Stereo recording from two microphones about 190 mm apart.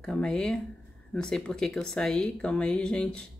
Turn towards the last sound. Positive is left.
turn(degrees=5)  # may be behind; listen again after turning